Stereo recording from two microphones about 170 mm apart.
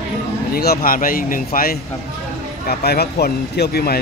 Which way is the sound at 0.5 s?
60° left (ahead or behind).